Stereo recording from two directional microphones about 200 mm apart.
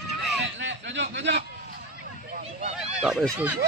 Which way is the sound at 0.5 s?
60° right (ahead or behind).